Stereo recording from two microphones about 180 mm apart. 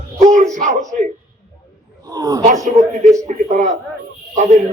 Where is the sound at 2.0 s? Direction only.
20° right (ahead or behind).